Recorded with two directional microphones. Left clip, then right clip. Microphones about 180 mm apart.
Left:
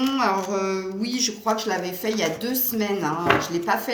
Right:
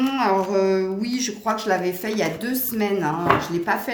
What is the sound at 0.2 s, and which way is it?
Speech, 50° right (ahead or behind).